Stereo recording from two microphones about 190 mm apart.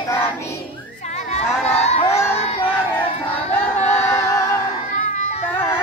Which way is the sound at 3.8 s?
40° left (ahead or behind).